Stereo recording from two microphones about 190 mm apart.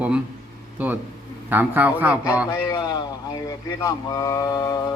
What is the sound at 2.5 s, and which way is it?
Speech, 20° left (ahead or behind).